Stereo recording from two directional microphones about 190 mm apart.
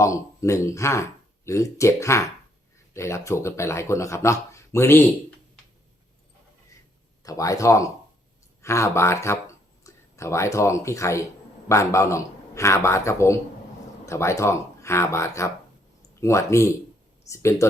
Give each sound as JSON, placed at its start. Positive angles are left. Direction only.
{"t": 0.0, "sound": "speech", "side_deg": 15}
{"t": 7.2, "sound": "speech", "side_deg": 15}